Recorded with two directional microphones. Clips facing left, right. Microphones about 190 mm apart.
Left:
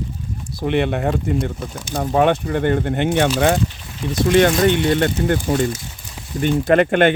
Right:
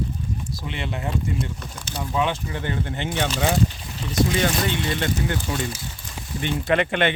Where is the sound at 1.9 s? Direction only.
50° left (ahead or behind).